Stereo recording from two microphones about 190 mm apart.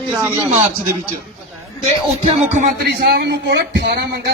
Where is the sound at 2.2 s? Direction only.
35° right (ahead or behind).